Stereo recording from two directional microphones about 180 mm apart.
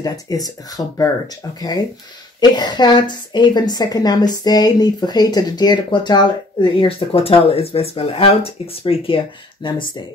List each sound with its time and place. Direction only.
0.0 s a woman's voice: 20° left (ahead or behind)